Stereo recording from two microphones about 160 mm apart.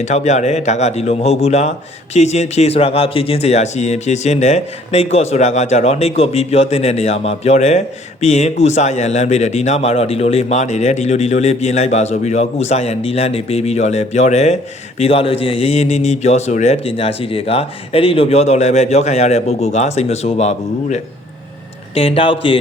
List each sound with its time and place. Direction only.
0.0 s a man's voice: 45° left (ahead or behind)